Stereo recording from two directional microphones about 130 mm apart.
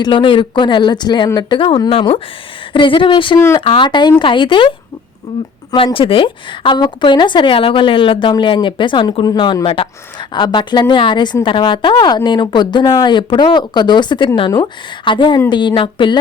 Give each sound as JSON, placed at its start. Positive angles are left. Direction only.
{"t": 0.0, "sound": "speech", "side_deg": 40}
{"t": 3.3, "sound": "speech", "side_deg": 25}
{"t": 3.6, "sound": "speech", "side_deg": 40}
{"t": 5.7, "sound": "speech", "side_deg": 45}